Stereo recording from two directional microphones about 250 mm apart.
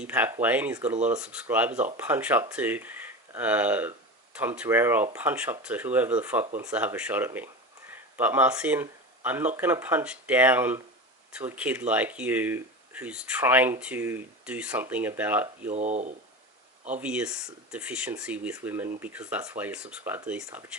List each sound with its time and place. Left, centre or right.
0.0 s speech: centre
15.7 s speech: right
17.0 s speech: centre